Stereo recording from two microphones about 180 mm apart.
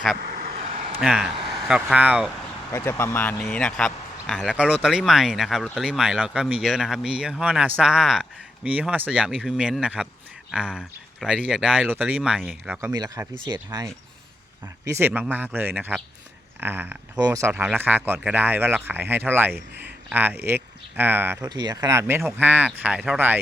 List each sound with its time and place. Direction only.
0.2 s vehicle: 60° right (ahead or behind)
1.0 s speech: 5° right (ahead or behind)
2.7 s speech: 15° left (ahead or behind); by 12.9 s 5° right (ahead or behind)
12.9 s speech: 20° right (ahead or behind)